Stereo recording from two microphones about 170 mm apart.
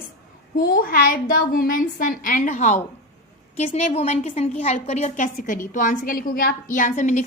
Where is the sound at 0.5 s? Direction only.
60° left (ahead or behind).